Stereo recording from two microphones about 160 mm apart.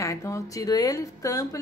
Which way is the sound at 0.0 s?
20° left (ahead or behind).